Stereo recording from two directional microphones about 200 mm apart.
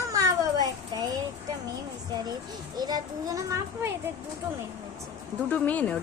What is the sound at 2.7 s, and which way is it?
A child's voice, 20° right (ahead or behind).